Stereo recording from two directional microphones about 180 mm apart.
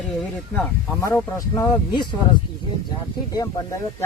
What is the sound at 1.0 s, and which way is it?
Speech, 15° left (ahead or behind).